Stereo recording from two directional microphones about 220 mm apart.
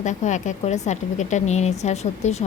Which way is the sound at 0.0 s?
35° left (ahead or behind).